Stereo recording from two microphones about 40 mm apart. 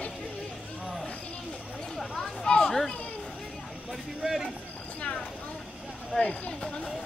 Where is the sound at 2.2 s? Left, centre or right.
Centre.